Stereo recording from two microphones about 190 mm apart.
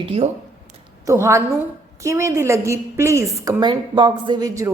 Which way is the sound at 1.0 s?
15° right (ahead or behind).